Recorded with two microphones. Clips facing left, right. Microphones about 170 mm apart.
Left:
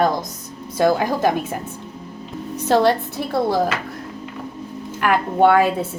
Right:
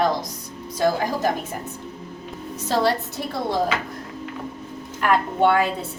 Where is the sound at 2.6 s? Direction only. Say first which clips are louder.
Left 5 dB; 65° left (ahead or behind).